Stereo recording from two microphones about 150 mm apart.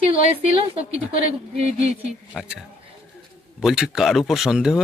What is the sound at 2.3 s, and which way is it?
Speech, centre (ahead or behind).